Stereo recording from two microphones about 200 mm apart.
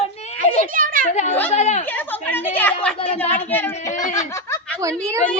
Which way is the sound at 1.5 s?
35° left (ahead or behind).